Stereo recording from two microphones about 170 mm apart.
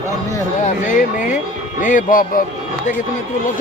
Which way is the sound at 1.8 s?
50° left (ahead or behind).